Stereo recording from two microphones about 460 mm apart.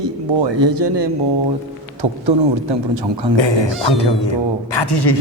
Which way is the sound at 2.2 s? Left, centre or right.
Right.